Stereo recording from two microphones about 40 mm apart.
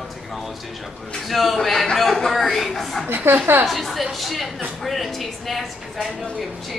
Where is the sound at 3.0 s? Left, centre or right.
Right.